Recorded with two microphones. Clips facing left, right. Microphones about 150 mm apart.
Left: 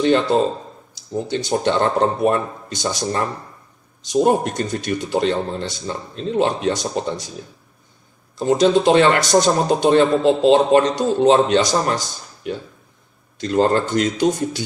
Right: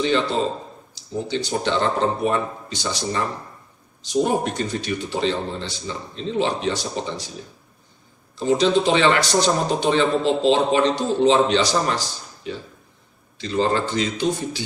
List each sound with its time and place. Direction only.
0.0 s a man's voice: 55° left (ahead or behind)
8.4 s a man's voice: 45° left (ahead or behind)